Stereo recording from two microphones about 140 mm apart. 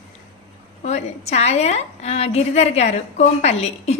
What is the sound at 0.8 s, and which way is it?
A woman's voice, 50° left (ahead or behind).